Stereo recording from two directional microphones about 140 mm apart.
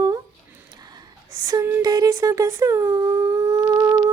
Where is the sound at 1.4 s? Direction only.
20° right (ahead or behind).